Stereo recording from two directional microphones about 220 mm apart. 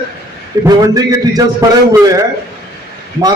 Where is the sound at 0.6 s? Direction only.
15° right (ahead or behind).